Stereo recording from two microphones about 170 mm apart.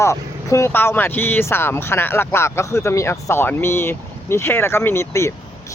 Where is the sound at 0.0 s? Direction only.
15° left (ahead or behind).